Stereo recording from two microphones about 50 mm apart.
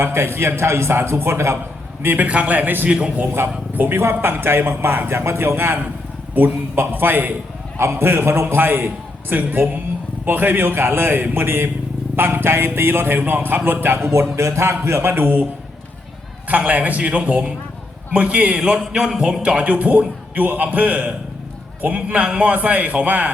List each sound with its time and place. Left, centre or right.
0.0 s a man's voice: right
2.0 s a man's voice: right
2.2 s a man's voice: right
2.6 s a man's voice: right
4.0 s a man's voice: right
7.8 s a man's voice: right
16.5 s a man's voice: right